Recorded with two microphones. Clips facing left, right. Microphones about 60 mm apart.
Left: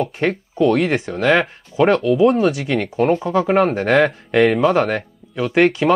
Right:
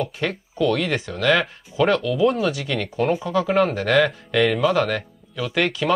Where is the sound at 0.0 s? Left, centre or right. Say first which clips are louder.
Left 5 dB; left.